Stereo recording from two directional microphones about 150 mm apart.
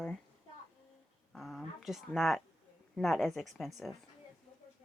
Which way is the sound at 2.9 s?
Centre (ahead or behind).